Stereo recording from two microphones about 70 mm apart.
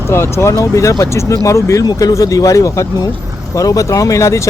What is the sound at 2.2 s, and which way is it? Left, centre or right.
Speech, left.